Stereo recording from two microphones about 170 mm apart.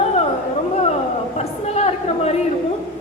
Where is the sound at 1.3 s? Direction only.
40° left (ahead or behind).